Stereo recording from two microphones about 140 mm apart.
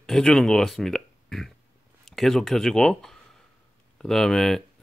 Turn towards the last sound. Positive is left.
turn(degrees=0)  # may be behind; listen again after turning